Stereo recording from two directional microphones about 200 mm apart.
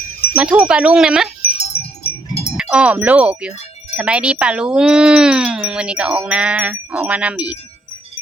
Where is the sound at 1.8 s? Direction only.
50° left (ahead or behind).